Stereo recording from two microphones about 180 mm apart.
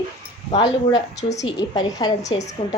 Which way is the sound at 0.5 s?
25° left (ahead or behind).